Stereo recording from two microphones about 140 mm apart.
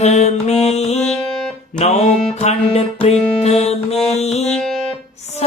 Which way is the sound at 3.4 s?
50° left (ahead or behind).